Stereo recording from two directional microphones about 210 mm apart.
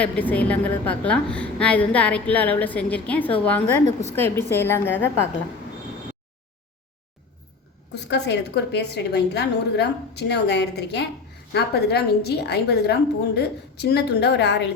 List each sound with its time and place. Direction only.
0.0 s a woman's voice: 5° left (ahead or behind)
7.9 s a woman's voice: 55° left (ahead or behind)